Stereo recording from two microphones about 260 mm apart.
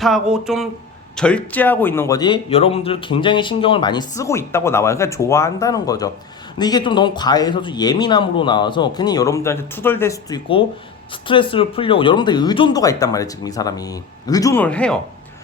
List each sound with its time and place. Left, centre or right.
0.0 s speech: centre